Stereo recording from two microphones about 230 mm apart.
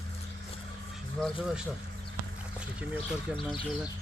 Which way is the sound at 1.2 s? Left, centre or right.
Centre.